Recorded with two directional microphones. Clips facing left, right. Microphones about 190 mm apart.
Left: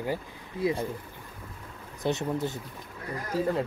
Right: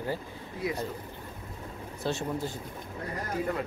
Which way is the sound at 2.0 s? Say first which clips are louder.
Left 3 dB; 20° left (ahead or behind).